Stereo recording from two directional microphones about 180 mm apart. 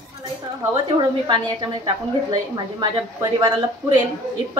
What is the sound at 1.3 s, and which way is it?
A woman's voice, 25° right (ahead or behind).